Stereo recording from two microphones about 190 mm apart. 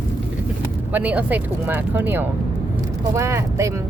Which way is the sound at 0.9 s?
10° right (ahead or behind).